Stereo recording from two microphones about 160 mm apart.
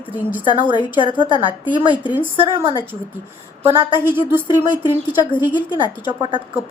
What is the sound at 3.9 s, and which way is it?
Speech, 15° right (ahead or behind).